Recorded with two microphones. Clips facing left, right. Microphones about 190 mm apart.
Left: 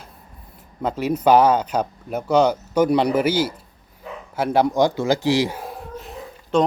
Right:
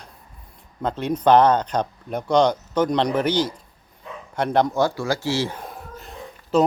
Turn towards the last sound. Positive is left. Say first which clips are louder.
# even
turn(degrees=0)  # may be behind; listen again after turning